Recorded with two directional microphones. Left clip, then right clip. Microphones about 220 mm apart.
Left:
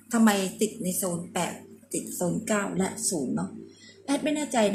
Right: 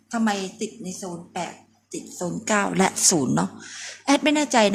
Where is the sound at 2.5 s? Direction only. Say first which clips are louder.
Right 11 dB; 30° right (ahead or behind).